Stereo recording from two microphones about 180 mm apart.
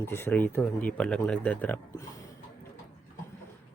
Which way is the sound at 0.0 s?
15° left (ahead or behind).